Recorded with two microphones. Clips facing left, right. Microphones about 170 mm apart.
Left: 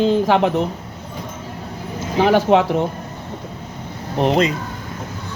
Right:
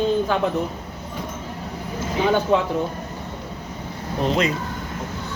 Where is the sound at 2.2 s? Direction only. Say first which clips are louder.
Left 5 dB; 85° left.